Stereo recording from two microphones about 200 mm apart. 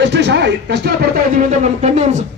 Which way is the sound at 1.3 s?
40° right (ahead or behind).